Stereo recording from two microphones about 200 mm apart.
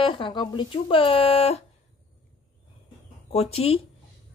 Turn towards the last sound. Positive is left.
turn(degrees=30)  # may be behind; listen again after turning